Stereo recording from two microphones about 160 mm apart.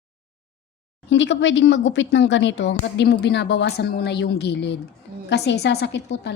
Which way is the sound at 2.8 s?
90° left.